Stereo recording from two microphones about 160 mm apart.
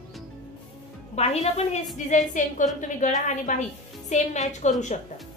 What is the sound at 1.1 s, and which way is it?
A woman's voice, 40° left (ahead or behind).